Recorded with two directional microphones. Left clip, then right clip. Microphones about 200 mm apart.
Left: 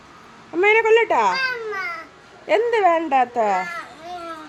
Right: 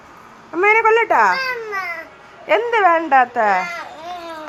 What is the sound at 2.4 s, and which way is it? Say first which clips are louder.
Speech: right 3 dB; 10° left (ahead or behind).